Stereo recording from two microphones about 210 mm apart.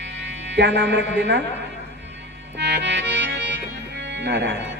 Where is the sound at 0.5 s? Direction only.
55° right (ahead or behind).